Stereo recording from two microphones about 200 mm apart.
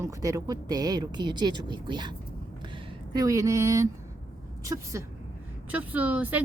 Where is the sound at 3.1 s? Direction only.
15° right (ahead or behind).